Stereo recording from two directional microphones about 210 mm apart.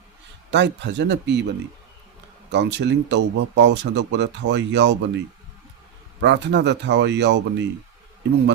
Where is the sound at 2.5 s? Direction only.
55° right (ahead or behind).